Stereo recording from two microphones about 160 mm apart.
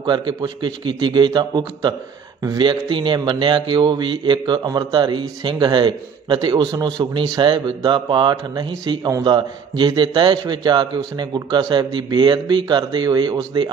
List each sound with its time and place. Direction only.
0.0 s speech: 30° right (ahead or behind)